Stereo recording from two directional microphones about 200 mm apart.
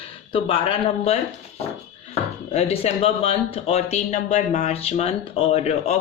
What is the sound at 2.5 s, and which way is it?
Speech, 30° left (ahead or behind).